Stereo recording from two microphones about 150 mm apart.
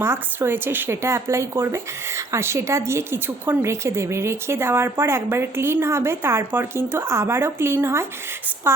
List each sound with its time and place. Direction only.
0.0 s speech: 15° right (ahead or behind)